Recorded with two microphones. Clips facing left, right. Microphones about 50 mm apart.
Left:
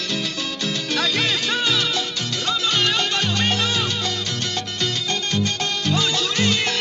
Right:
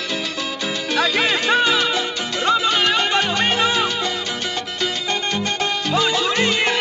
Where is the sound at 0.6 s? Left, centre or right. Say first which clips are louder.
Right 3 dB; centre.